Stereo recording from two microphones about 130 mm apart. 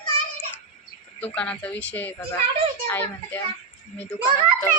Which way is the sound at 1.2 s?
10° left (ahead or behind).